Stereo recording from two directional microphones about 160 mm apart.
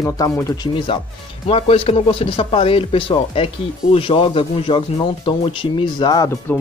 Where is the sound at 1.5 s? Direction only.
35° left (ahead or behind).